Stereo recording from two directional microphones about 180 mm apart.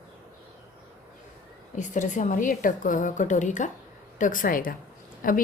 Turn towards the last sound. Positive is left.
turn(degrees=50)  # may be behind; listen again after turning